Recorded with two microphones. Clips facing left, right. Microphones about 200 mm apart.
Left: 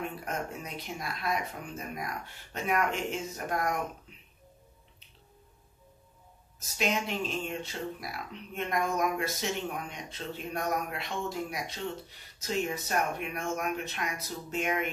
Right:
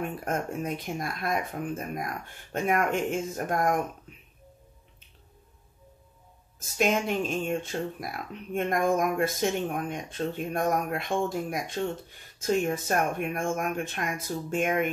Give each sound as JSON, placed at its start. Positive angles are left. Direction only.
{"t": 0.0, "sound": "speech", "side_deg": -50}
{"t": 6.8, "sound": "speech", "side_deg": -50}